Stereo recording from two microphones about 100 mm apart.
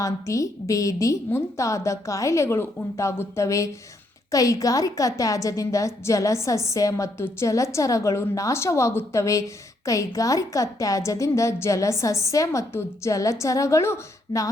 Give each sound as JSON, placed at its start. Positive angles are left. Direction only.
{"t": 0.0, "sound": "a woman's voice", "side_deg": 35}